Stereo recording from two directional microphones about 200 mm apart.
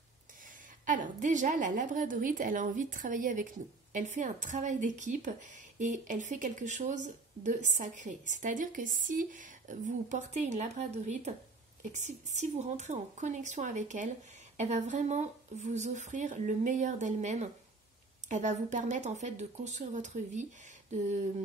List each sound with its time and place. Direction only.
0.8 s speech: 40° right (ahead or behind)